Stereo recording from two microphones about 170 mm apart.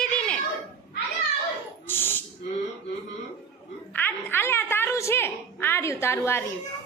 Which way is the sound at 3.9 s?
10° left (ahead or behind).